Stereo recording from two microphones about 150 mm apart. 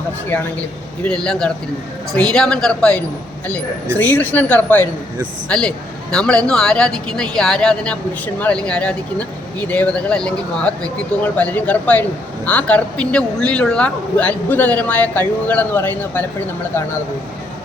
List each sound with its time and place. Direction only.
1.0 s speech: 5° left (ahead or behind)